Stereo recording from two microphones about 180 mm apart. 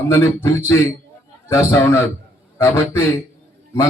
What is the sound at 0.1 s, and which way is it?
A man's voice, 15° left (ahead or behind).